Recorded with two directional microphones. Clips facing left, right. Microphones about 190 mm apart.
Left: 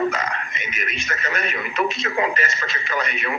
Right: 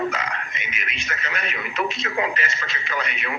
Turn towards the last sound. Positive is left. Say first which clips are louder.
# left 3 dB
turn(degrees=45)  # may be behind; listen again after turning